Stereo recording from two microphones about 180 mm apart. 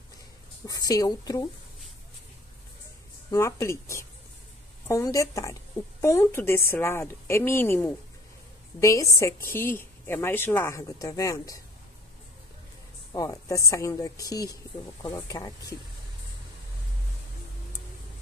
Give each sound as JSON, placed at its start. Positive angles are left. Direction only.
{"t": 0.7, "sound": "a woman's voice", "side_deg": 20}
{"t": 3.3, "sound": "speech", "side_deg": 15}
{"t": 13.1, "sound": "a woman's voice", "side_deg": 20}